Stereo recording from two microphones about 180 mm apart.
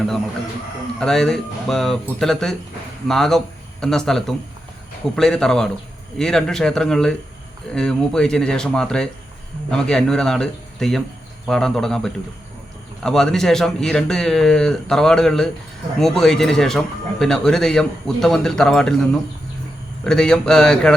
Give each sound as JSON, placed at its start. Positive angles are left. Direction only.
{"t": 0.9, "sound": "a man's voice", "side_deg": 5}
{"t": 20.1, "sound": "a man's voice", "side_deg": 5}